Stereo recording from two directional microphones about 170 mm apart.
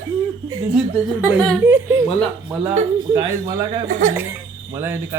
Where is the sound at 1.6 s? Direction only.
15° right (ahead or behind).